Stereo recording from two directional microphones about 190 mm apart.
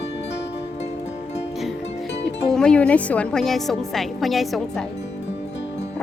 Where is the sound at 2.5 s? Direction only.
5° left (ahead or behind).